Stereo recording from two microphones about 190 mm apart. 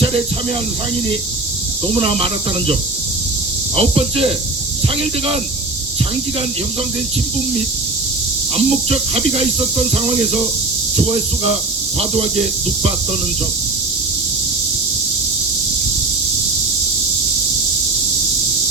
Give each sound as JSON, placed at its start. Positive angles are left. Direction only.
{"t": 2.0, "sound": "speech", "side_deg": -30}
{"t": 3.8, "sound": "speech", "side_deg": -30}
{"t": 8.9, "sound": "speech", "side_deg": -30}